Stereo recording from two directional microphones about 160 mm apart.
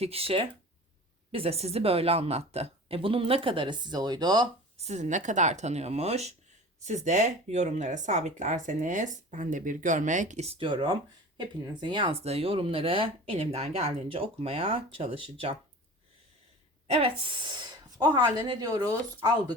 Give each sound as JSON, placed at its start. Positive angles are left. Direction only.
{"t": 0.0, "sound": "speech", "side_deg": -35}
{"t": 4.8, "sound": "speech", "side_deg": -45}
{"t": 16.8, "sound": "a woman's voice", "side_deg": -40}